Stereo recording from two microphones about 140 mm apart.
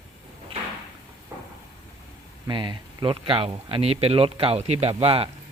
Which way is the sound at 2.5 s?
35° right (ahead or behind).